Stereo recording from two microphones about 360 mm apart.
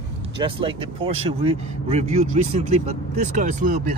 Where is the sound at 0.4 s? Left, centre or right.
Centre.